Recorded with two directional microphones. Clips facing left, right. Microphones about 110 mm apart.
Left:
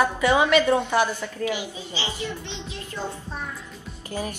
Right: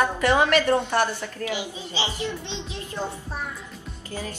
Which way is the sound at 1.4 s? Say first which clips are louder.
Left 2 dB; 20° right (ahead or behind).